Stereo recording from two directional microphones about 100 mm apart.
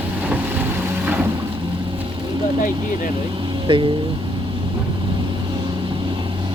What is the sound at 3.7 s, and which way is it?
Speech, 65° right (ahead or behind).